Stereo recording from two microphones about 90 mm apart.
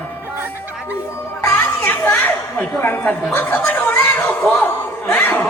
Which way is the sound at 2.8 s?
20° left (ahead or behind).